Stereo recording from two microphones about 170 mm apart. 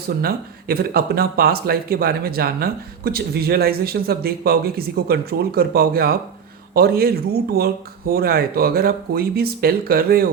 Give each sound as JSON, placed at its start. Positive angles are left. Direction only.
{"t": 0.2, "sound": "speech", "side_deg": -65}